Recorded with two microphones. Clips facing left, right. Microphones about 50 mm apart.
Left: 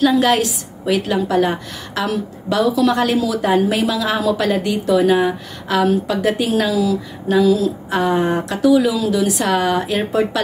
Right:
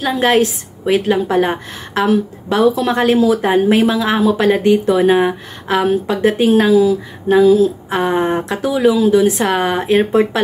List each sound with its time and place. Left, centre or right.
0.1 s a woman's voice: right